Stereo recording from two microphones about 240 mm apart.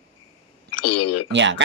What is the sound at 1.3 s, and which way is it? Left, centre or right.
Speech, right.